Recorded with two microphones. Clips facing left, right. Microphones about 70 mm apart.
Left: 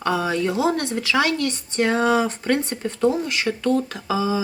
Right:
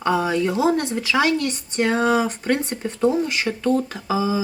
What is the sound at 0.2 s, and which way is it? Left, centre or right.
Speech, centre.